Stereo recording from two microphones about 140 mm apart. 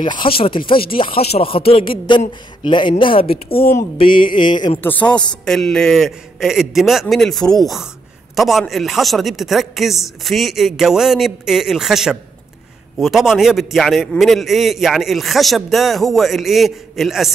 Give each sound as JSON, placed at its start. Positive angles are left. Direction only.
{"t": 0.0, "sound": "speech", "side_deg": 35}
{"t": 4.8, "sound": "a woman's voice", "side_deg": 10}